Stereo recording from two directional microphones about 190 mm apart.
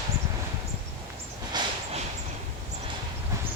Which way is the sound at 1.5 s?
20° right (ahead or behind).